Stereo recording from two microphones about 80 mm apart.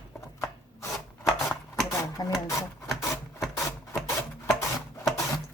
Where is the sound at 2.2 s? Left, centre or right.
Left.